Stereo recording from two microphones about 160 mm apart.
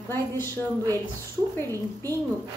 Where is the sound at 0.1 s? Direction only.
15° left (ahead or behind).